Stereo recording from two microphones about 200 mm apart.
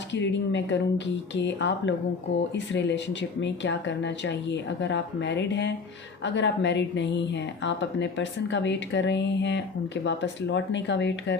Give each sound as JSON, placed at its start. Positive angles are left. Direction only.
{"t": 0.1, "sound": "speech", "side_deg": 60}